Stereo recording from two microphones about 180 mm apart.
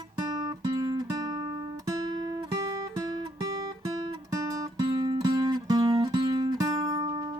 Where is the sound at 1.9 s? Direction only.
20° right (ahead or behind).